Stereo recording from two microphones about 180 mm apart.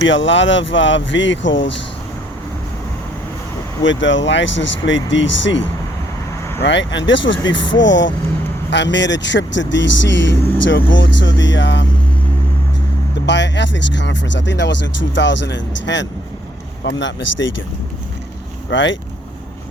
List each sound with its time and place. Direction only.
0.0 s speech: 90° left
3.8 s speech: 90° left
8.7 s speech: 80° left
13.2 s speech: 75° left (ahead or behind)
18.7 s speech: 90° left